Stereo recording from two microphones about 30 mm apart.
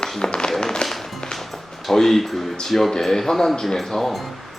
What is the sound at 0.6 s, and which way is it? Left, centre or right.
Music, left.